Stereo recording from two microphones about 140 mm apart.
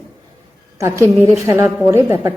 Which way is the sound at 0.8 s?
20° right (ahead or behind).